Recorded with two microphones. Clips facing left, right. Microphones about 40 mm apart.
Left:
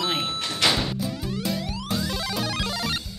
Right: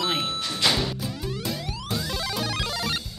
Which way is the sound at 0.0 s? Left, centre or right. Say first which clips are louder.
Even; centre.